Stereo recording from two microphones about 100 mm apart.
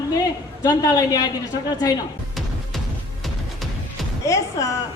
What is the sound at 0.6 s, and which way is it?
Speech, 45° left (ahead or behind).